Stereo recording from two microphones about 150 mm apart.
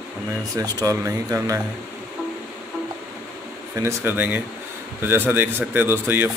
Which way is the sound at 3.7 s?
15° right (ahead or behind).